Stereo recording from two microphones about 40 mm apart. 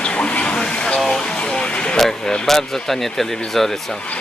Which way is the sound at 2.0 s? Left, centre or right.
Centre.